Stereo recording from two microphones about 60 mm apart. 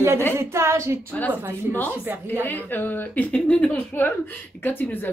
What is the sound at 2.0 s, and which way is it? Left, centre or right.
Speech, right.